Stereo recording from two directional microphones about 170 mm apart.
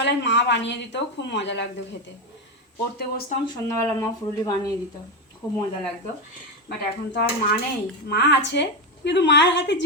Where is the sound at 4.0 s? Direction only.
20° left (ahead or behind).